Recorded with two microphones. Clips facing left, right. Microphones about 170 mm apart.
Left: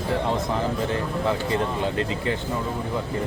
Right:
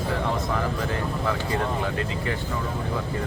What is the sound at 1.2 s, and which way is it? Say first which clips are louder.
Speech: left 2 dB; 25° left (ahead or behind).